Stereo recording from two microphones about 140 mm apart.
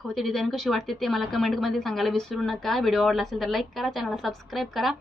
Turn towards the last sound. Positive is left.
turn(degrees=0)  # may be behind; listen again after turning